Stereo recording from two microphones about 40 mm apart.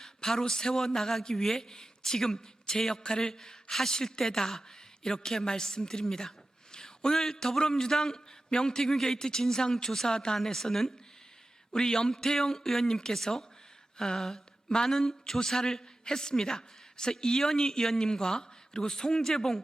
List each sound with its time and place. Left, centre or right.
0.0 s a woman's voice: centre